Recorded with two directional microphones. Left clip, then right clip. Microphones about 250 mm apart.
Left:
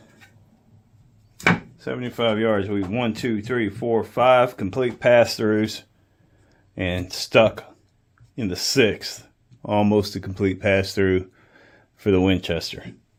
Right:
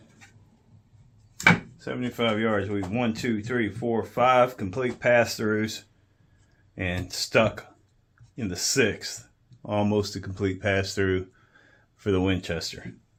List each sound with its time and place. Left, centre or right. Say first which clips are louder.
1.7 s speech: left 3 dB; left